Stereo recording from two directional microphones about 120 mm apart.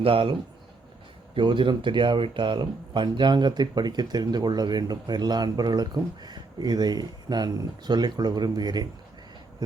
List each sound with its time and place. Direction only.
0.0 s speech: 50° right (ahead or behind)
1.4 s speech: 40° right (ahead or behind)